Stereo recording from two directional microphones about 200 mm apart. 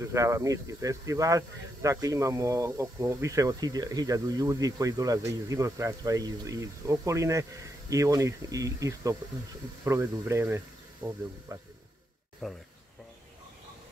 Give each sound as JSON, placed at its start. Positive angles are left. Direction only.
{"t": 0.0, "sound": "speech", "side_deg": -15}
{"t": 12.4, "sound": "speech", "side_deg": 0}